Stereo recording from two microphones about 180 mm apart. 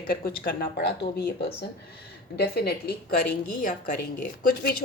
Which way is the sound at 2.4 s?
60° left (ahead or behind).